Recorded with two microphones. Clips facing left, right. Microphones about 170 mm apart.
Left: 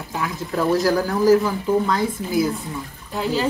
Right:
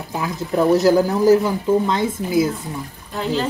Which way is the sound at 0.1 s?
20° right (ahead or behind).